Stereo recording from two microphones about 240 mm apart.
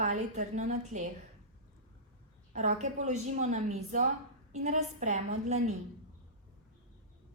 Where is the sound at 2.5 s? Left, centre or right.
Right.